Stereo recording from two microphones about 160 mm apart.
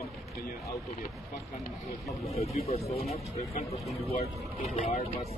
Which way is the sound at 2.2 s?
40° left (ahead or behind).